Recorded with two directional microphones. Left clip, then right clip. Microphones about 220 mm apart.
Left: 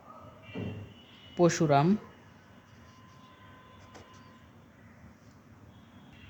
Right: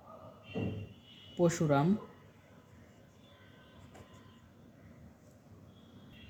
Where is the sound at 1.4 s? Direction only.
40° left (ahead or behind).